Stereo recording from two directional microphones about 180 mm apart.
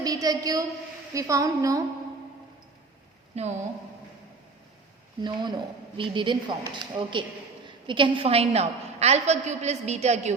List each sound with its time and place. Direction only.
0.0 s a woman's voice: 20° right (ahead or behind)
3.3 s a woman's voice: 35° right (ahead or behind)
5.2 s a woman's voice: 25° right (ahead or behind)